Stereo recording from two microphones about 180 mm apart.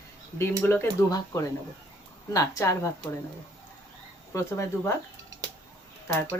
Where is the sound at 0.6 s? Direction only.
15° left (ahead or behind).